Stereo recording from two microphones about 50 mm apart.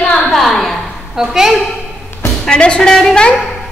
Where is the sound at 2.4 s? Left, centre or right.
Centre.